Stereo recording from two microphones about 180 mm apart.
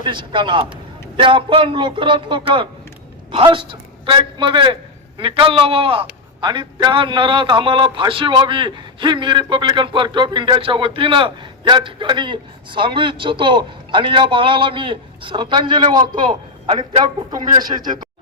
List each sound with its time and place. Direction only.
0.0 s a man's voice: 25° right (ahead or behind)